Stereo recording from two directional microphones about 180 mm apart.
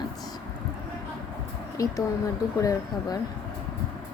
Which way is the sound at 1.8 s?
20° left (ahead or behind).